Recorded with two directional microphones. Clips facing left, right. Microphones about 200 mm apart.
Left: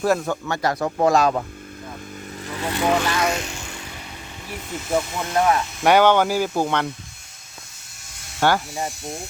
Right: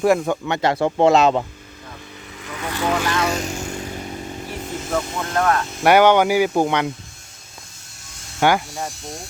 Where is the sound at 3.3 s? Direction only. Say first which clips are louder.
Right 4 dB; 40° right (ahead or behind).